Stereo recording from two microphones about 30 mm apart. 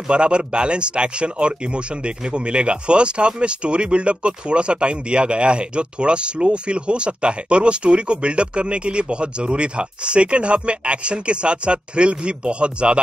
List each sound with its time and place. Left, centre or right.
0.1 s speech: right